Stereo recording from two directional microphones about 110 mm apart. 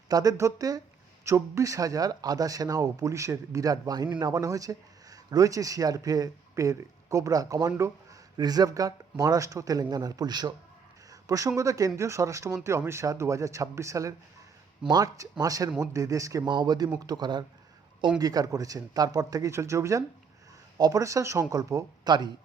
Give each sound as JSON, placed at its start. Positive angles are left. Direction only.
{"t": 0.1, "sound": "speech", "side_deg": -35}
{"t": 16.5, "sound": "speech", "side_deg": -40}